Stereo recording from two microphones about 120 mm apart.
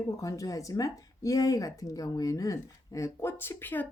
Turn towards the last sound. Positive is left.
turn(degrees=15)  # may be behind; listen again after turning